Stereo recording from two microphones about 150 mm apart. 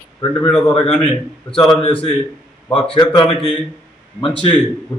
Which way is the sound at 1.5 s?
35° left (ahead or behind).